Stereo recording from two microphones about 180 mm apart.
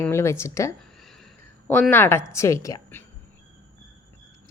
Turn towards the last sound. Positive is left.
turn(degrees=15)  # may be behind; listen again after turning